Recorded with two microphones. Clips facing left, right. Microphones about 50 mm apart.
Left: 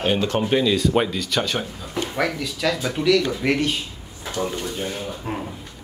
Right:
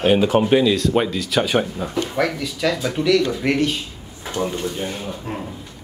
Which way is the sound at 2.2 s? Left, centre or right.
Centre.